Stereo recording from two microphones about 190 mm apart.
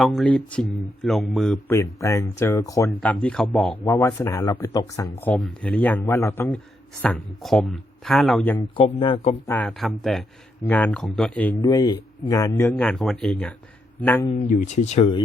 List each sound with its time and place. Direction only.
0.0 s speech: centre (ahead or behind)
1.7 s speech: 15° left (ahead or behind)
3.0 s speech: 5° left (ahead or behind)
3.8 s speech: 15° left (ahead or behind)
8.5 s speech: 30° left (ahead or behind)
9.5 s speech: 5° left (ahead or behind)
11.6 s speech: 20° left (ahead or behind)
14.4 s speech: 40° left (ahead or behind)